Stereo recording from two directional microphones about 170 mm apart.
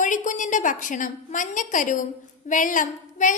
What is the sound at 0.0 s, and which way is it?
A woman's voice, 50° left (ahead or behind).